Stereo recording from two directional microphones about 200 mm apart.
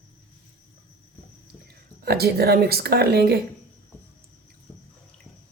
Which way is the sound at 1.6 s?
50° right (ahead or behind).